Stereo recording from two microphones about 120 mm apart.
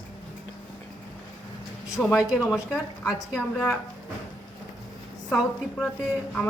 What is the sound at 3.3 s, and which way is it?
Speech, 25° left (ahead or behind).